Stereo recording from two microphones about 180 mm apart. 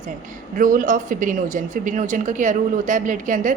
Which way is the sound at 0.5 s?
50° right (ahead or behind).